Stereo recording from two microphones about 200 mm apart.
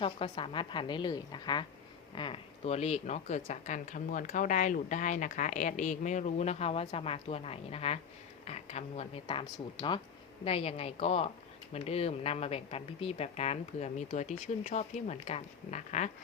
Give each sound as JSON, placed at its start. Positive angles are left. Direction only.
{"t": 0.0, "sound": "a woman's voice", "side_deg": 25}